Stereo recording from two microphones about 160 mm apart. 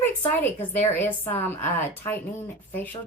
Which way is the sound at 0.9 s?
15° left (ahead or behind).